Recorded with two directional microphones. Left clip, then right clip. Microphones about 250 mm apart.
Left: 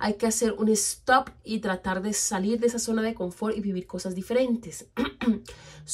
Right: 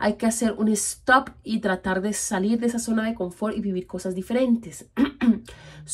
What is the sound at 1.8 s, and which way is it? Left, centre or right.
A woman's voice, centre.